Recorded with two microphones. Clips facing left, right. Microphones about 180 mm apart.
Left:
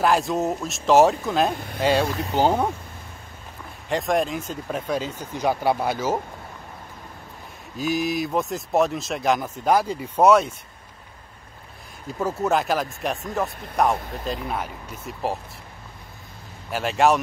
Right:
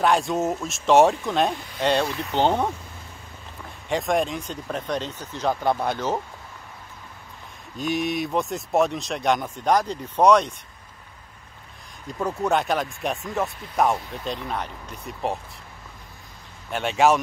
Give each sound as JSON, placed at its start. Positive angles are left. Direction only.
{"t": 0.0, "sound": "speech", "side_deg": 0}
{"t": 2.0, "sound": "speech", "side_deg": 45}
{"t": 2.3, "sound": "speech", "side_deg": 5}
{"t": 3.9, "sound": "speech", "side_deg": 0}
{"t": 7.7, "sound": "speech", "side_deg": 0}
{"t": 12.1, "sound": "speech", "side_deg": 5}
{"t": 16.7, "sound": "speech", "side_deg": 0}